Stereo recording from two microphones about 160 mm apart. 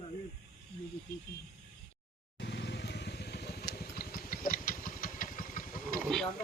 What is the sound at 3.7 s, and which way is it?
Engine, 75° left (ahead or behind).